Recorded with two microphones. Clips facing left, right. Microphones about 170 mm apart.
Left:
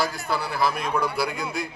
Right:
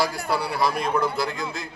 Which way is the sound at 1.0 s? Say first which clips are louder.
Right 1 dB; 15° left (ahead or behind).